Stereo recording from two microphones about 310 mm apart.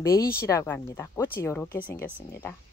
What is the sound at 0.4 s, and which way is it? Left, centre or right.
Speech, centre.